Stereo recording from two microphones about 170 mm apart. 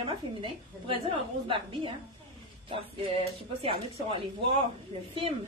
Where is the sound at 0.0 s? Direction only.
30° right (ahead or behind).